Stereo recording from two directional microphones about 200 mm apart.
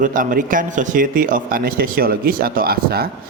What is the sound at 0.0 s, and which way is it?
A man's voice, 40° right (ahead or behind).